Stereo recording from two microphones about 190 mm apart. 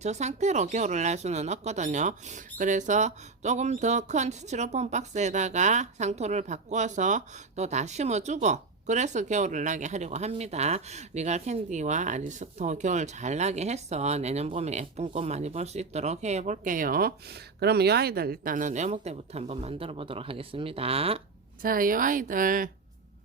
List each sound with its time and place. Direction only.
0.0 s speech: 35° right (ahead or behind)
21.6 s a woman's voice: 50° right (ahead or behind)